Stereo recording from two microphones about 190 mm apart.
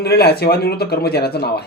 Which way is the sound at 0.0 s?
55° left (ahead or behind).